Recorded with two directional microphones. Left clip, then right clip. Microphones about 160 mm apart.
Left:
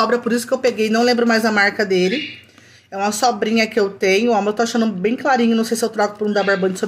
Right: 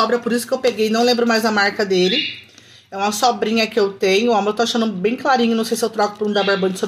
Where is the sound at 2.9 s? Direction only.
5° left (ahead or behind).